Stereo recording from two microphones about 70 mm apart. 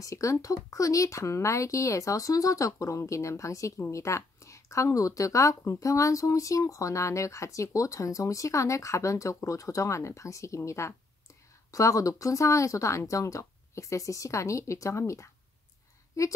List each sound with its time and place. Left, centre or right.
0.0 s speech: left